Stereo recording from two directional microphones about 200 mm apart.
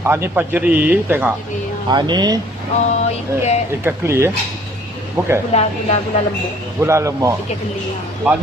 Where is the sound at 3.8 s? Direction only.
15° right (ahead or behind).